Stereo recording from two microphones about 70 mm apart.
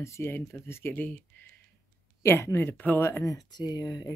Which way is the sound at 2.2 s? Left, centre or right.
Left.